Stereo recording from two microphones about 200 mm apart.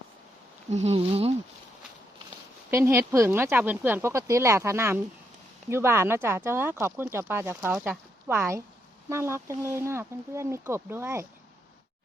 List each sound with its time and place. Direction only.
0.7 s speech: 30° right (ahead or behind)
2.6 s speech: 10° right (ahead or behind)